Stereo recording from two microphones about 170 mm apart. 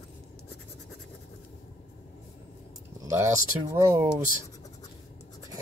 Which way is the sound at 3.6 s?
15° right (ahead or behind).